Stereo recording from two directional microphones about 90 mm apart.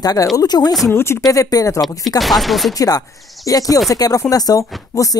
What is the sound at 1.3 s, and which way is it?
Speech, 40° left (ahead or behind).